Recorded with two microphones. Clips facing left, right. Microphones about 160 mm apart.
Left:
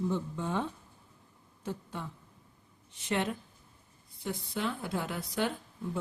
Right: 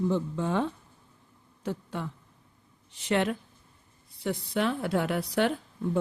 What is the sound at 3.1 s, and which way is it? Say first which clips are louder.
A woman's voice: right 5 dB; 75° right (ahead or behind).